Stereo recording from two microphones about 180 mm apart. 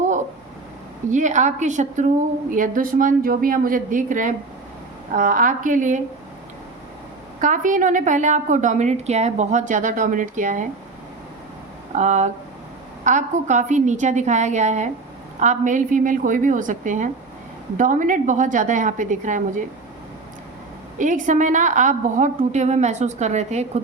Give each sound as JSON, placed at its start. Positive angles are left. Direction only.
{"t": 1.1, "sound": "a woman's voice", "side_deg": -40}
{"t": 7.4, "sound": "a woman's voice", "side_deg": -45}
{"t": 11.9, "sound": "a woman's voice", "side_deg": -40}
{"t": 21.0, "sound": "a woman's voice", "side_deg": -45}